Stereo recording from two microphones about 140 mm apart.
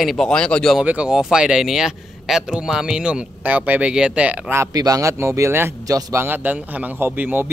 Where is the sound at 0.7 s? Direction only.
5° right (ahead or behind).